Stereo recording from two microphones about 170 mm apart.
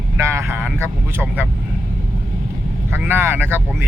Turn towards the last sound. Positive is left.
turn(degrees=-10)  # may be behind; listen again after turning